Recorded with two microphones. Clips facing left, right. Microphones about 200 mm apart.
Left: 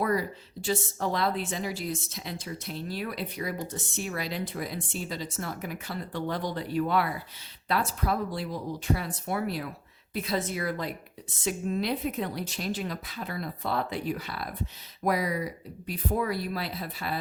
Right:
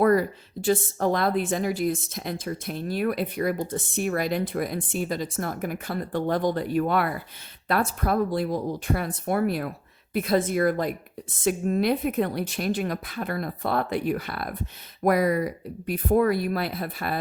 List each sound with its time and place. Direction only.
0.0 s a woman's voice: 50° right (ahead or behind)